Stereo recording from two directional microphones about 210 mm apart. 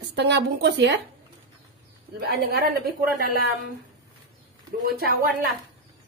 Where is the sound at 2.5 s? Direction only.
50° right (ahead or behind).